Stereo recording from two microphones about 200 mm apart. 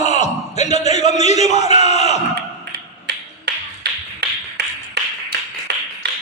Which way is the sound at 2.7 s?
55° right (ahead or behind).